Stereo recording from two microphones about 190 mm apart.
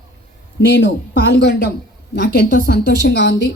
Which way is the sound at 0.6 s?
60° left (ahead or behind).